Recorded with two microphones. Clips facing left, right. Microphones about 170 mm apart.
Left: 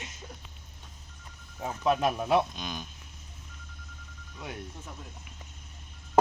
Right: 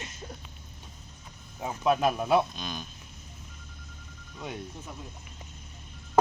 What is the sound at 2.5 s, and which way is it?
Speech, 15° left (ahead or behind).